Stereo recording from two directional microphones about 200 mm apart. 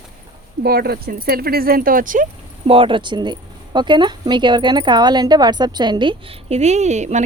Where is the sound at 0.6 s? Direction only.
50° right (ahead or behind).